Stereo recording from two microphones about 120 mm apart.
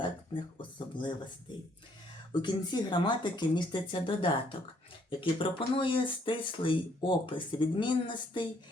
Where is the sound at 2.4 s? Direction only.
40° left (ahead or behind).